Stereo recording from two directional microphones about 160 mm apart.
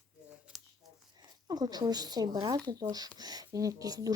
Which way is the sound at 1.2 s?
25° right (ahead or behind).